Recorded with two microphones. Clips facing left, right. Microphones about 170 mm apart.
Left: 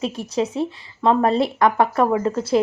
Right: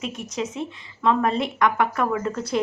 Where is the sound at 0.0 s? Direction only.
35° left (ahead or behind).